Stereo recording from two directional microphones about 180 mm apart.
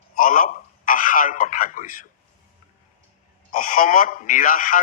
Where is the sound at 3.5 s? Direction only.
50° left (ahead or behind).